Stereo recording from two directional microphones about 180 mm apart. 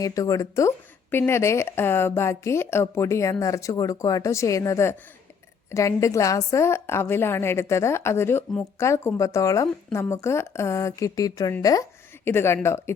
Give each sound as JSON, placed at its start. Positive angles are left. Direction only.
{"t": 0.0, "sound": "a woman's voice", "side_deg": 20}